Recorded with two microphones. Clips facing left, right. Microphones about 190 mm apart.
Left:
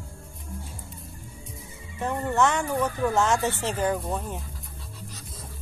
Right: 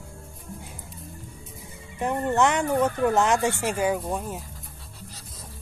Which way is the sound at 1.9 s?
15° right (ahead or behind).